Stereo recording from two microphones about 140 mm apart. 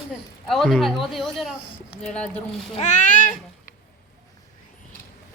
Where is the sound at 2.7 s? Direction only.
55° left (ahead or behind).